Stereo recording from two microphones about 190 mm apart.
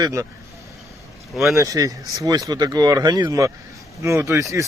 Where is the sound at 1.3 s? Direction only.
Centre (ahead or behind).